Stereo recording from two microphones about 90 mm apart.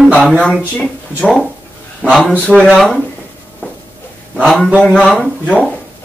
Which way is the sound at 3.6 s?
15° left (ahead or behind).